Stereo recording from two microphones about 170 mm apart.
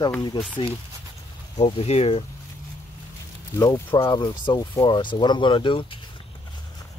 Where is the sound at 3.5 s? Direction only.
20° left (ahead or behind).